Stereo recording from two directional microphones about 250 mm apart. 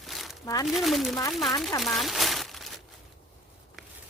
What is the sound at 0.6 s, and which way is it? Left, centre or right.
Speech, centre.